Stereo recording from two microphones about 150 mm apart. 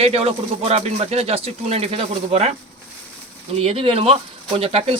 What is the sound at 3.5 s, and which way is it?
Speech, 40° right (ahead or behind).